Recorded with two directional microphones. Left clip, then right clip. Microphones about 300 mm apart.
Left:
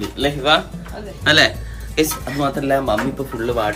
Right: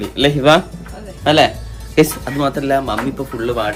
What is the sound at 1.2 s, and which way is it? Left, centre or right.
Speech, centre.